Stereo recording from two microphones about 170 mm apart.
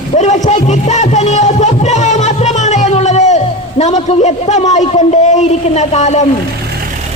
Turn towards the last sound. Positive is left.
turn(degrees=40)  # may be behind; listen again after turning